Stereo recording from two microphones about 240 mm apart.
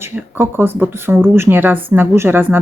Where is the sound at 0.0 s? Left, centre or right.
Centre.